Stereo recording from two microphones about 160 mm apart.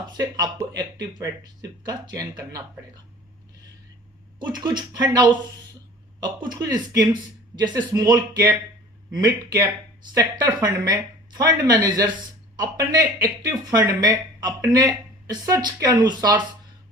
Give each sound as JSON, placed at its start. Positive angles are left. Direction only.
{"t": 0.2, "sound": "speech", "side_deg": -25}
{"t": 4.4, "sound": "speech", "side_deg": -25}
{"t": 9.1, "sound": "speech", "side_deg": -25}